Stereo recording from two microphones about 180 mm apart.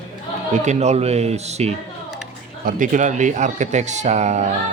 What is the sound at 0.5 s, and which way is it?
Speech, 40° right (ahead or behind).